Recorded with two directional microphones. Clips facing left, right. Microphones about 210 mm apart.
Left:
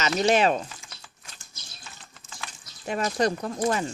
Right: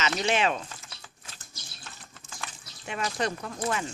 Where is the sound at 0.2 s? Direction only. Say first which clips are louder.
Left 7 dB; 40° left (ahead or behind).